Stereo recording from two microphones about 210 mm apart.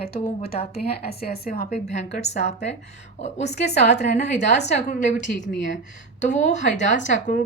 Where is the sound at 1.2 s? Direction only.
45° left (ahead or behind).